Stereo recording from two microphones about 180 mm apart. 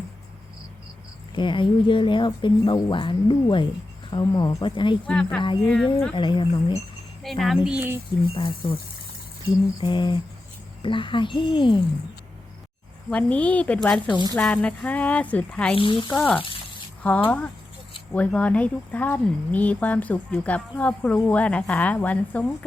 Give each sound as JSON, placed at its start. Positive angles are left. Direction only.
{"t": 1.4, "sound": "speech", "side_deg": 25}
{"t": 5.0, "sound": "speech", "side_deg": 5}
{"t": 5.4, "sound": "speech", "side_deg": 25}
{"t": 5.7, "sound": "speech", "side_deg": 5}
{"t": 6.1, "sound": "speech", "side_deg": 25}
{"t": 7.2, "sound": "speech", "side_deg": 0}
{"t": 8.3, "sound": "speech", "side_deg": 30}
{"t": 9.8, "sound": "speech", "side_deg": 25}
{"t": 13.1, "sound": "speech", "side_deg": 5}
{"t": 15.7, "sound": "speech", "side_deg": 30}
{"t": 16.1, "sound": "speech", "side_deg": 5}
{"t": 16.4, "sound": "a sound", "side_deg": 30}
{"t": 17.2, "sound": "speech", "side_deg": 5}